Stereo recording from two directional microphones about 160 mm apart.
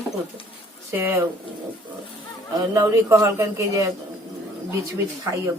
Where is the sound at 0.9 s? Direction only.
15° right (ahead or behind).